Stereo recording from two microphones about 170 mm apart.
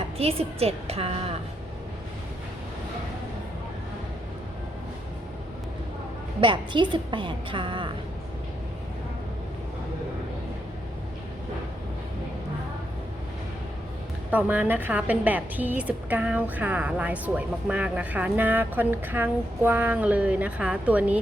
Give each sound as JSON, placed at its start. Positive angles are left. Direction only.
{"t": 0.2, "sound": "a woman's voice", "side_deg": -35}
{"t": 6.4, "sound": "a woman's voice", "side_deg": -30}
{"t": 14.3, "sound": "a woman's voice", "side_deg": -10}